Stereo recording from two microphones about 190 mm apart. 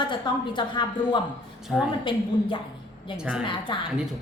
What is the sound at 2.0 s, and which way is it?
Speech, 25° left (ahead or behind).